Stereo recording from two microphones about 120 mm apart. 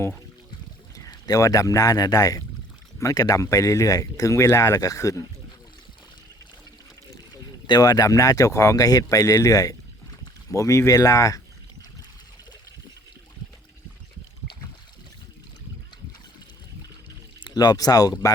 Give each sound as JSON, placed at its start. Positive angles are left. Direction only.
{"t": 0.9, "sound": "speech", "side_deg": 30}
{"t": 7.7, "sound": "speech", "side_deg": 30}
{"t": 17.4, "sound": "speech", "side_deg": 35}